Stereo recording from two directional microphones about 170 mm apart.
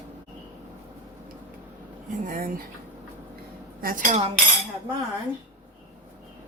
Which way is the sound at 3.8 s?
50° right (ahead or behind).